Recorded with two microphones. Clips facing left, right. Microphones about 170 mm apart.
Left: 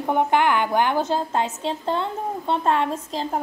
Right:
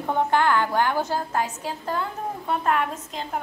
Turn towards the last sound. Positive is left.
turn(degrees=30)  # may be behind; listen again after turning